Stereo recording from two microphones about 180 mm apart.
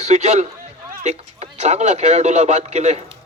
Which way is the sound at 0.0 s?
40° right (ahead or behind).